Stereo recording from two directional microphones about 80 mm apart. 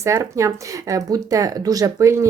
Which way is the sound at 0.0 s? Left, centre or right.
Right.